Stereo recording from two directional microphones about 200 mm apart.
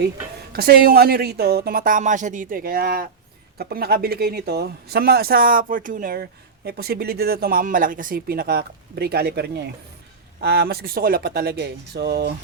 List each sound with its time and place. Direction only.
0.5 s speech: 50° right (ahead or behind)